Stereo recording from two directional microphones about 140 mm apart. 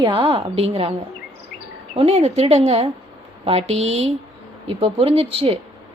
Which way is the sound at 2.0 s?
50° right (ahead or behind).